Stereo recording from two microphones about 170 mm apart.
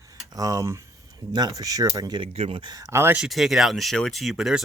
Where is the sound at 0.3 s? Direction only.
20° right (ahead or behind).